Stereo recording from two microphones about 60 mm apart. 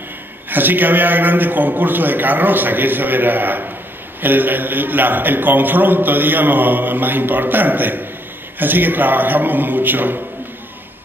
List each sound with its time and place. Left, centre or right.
0.5 s a man's voice: right